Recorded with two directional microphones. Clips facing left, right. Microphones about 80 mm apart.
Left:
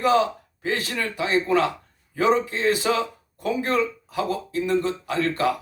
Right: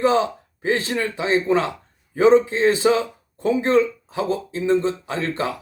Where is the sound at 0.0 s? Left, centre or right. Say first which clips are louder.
Right 1 dB; right.